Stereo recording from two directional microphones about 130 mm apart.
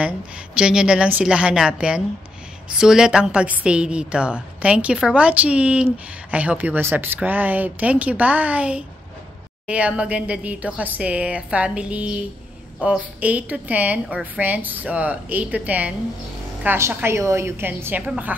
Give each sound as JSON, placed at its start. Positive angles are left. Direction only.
{"t": 0.6, "sound": "a woman's voice", "side_deg": -5}